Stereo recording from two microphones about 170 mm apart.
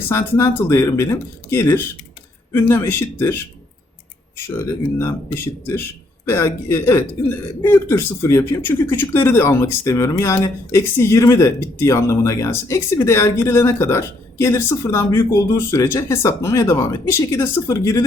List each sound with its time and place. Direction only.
0.1 s a man's voice: 15° left (ahead or behind)